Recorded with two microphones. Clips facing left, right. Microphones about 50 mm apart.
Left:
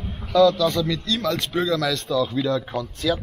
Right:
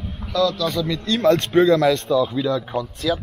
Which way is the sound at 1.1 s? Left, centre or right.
Right.